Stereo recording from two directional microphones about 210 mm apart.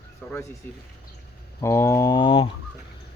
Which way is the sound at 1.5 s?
15° left (ahead or behind).